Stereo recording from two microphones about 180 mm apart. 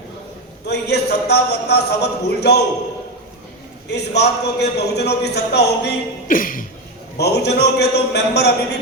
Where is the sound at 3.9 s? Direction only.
65° left (ahead or behind); by 6.6 s 50° left (ahead or behind).